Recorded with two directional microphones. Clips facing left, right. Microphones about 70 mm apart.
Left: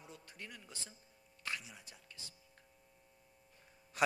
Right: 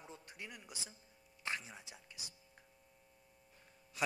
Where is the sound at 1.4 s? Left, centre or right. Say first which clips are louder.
Right 2 dB; right.